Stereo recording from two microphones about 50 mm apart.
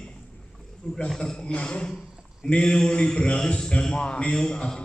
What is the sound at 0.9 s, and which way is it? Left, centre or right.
A man's voice, centre.